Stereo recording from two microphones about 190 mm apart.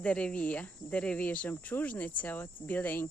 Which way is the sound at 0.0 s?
5° left (ahead or behind).